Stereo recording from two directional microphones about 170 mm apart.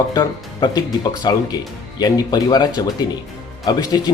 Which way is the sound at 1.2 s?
25° left (ahead or behind).